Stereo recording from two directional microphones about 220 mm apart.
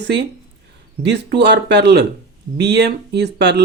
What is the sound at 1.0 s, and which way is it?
Speech, 50° right (ahead or behind).